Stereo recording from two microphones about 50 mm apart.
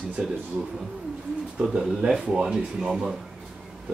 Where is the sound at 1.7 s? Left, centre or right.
Centre.